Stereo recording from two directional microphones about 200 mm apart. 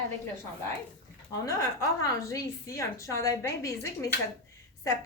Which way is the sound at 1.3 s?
15° left (ahead or behind).